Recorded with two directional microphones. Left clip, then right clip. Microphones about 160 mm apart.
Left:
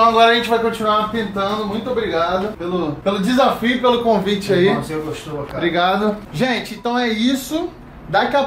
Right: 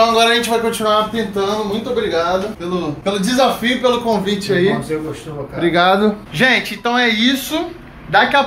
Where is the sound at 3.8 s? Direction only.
15° left (ahead or behind).